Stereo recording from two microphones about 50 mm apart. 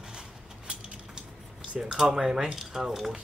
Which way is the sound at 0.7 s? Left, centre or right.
Centre.